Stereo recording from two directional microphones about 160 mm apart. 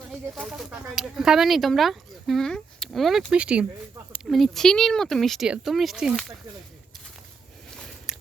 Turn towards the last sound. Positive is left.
turn(degrees=0)  # may be behind; listen again after turning